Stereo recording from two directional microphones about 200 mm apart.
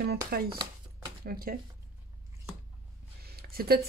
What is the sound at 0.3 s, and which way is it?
Speech, 50° right (ahead or behind).